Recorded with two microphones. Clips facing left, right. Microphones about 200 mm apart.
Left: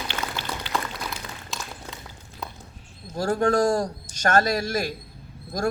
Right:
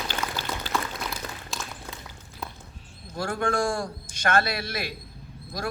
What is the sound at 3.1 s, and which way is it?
A man's voice, 40° left (ahead or behind).